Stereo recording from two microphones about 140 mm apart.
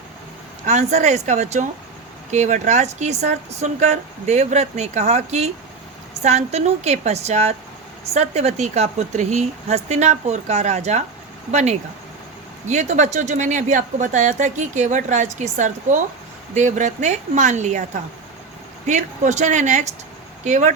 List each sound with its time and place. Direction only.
0.6 s speech: 55° right (ahead or behind)